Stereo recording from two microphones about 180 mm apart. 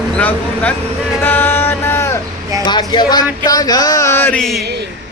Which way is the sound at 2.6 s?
25° left (ahead or behind).